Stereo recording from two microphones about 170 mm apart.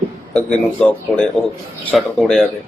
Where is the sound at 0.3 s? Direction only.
5° left (ahead or behind).